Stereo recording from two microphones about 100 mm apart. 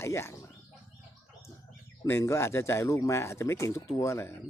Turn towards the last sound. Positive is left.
turn(degrees=25)  # may be behind; listen again after turning